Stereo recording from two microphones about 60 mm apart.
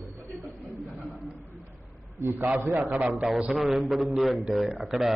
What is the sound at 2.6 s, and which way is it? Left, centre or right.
Speech, right.